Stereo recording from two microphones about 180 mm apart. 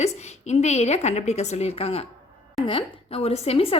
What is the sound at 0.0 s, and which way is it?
A woman's voice, 40° left (ahead or behind).